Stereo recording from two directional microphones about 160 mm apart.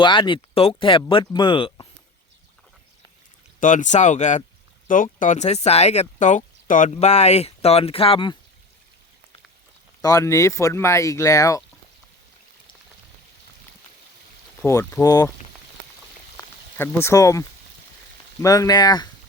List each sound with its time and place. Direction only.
0.0 s speech: 30° left (ahead or behind)
3.6 s speech: 50° left (ahead or behind); by 8.4 s 35° left (ahead or behind)
10.0 s speech: 20° left (ahead or behind)
14.6 s speech: 15° left (ahead or behind)
16.4 s a sound: 15° left (ahead or behind)
18.4 s speech: 20° left (ahead or behind)